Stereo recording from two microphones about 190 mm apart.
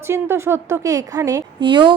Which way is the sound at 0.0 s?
15° right (ahead or behind).